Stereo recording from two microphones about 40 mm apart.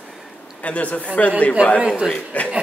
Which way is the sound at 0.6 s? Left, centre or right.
Left.